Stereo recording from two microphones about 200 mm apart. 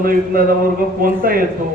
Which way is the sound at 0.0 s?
45° right (ahead or behind).